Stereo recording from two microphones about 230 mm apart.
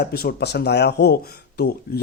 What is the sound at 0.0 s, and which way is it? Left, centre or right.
Speech, left.